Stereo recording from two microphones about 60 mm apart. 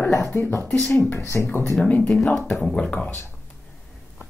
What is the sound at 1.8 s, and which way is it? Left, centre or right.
Speech, left.